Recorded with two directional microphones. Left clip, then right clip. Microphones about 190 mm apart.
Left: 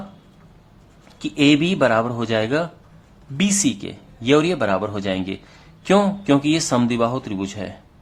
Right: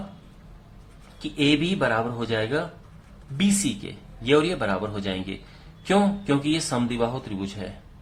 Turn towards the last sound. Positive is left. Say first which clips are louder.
# left 6 dB
turn(degrees=35)  # may be behind; listen again after turning